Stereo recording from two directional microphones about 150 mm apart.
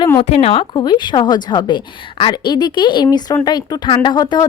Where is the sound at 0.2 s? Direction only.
40° left (ahead or behind).